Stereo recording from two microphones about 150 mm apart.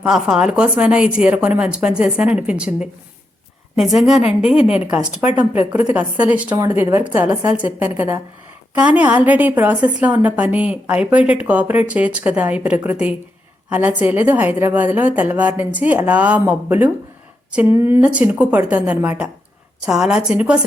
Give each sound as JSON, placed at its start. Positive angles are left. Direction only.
{"t": 0.0, "sound": "a woman's voice", "side_deg": -5}
{"t": 3.8, "sound": "a woman's voice", "side_deg": 0}